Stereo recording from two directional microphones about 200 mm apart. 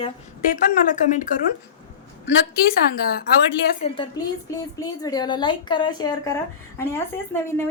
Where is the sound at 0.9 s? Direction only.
40° left (ahead or behind).